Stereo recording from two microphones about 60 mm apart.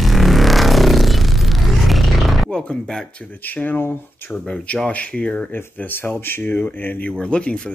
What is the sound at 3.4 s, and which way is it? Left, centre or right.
Speech, left.